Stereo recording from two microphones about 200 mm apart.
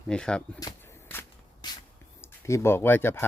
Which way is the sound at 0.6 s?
10° left (ahead or behind).